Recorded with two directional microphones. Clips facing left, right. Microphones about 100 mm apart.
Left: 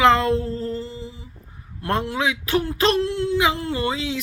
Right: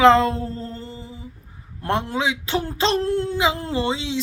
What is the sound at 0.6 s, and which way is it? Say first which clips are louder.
Music: left 5 dB; 35° right (ahead or behind).